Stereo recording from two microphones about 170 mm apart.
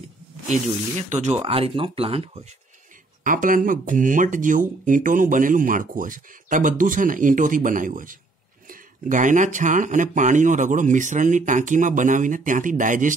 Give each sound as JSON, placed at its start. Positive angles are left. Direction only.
{"t": 0.5, "sound": "speech", "side_deg": -40}
{"t": 3.3, "sound": "speech", "side_deg": -55}